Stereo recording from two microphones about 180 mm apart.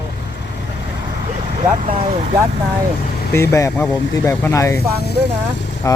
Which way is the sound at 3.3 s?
15° left (ahead or behind).